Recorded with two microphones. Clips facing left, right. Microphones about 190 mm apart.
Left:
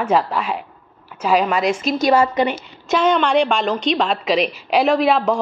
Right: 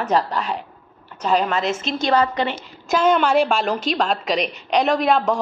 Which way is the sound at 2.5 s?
Centre (ahead or behind).